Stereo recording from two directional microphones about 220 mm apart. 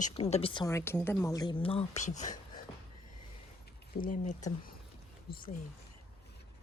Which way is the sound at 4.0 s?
35° left (ahead or behind).